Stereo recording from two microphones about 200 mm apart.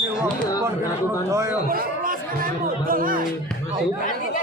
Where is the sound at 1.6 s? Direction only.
45° right (ahead or behind).